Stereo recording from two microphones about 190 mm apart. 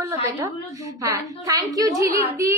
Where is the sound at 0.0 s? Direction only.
15° right (ahead or behind).